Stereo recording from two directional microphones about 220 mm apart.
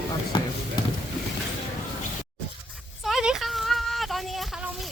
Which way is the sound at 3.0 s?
Centre (ahead or behind).